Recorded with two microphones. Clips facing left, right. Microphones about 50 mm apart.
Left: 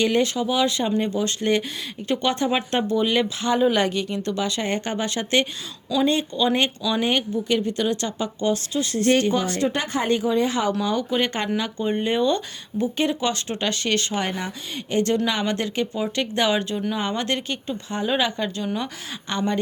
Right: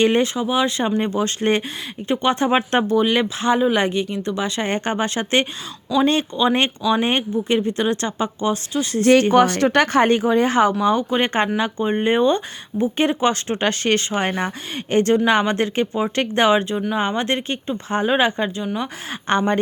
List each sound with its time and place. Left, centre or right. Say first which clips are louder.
0.0 s speech: right 3 dB; right
2.0 s speech: right 4 dB; right
4.4 s speech: right 3 dB; right
9.3 s speech: right 8 dB; right
10.1 s speech: right 4 dB; right
10.7 s speech: right 4 dB; right
19.3 s speech: right 6 dB; right